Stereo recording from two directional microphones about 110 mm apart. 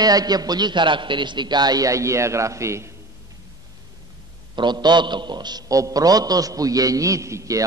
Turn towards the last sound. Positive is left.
turn(degrees=-30)  # may be behind; listen again after turning